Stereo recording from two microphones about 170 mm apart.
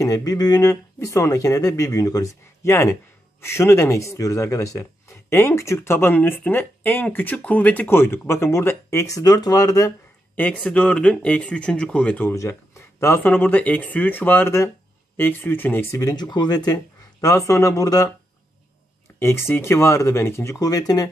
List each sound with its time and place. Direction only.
0.0 s speech: 20° left (ahead or behind)
19.1 s speech: 15° left (ahead or behind)